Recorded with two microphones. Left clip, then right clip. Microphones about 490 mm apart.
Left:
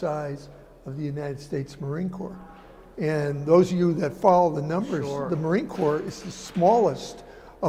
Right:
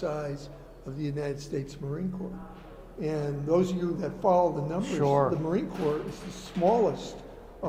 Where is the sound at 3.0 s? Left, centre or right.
Left.